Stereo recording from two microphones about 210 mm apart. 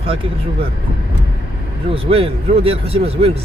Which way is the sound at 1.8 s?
25° right (ahead or behind).